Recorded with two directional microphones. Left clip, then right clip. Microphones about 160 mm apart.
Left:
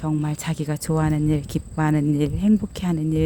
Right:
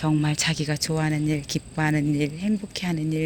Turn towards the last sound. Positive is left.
turn(degrees=25)  # may be behind; listen again after turning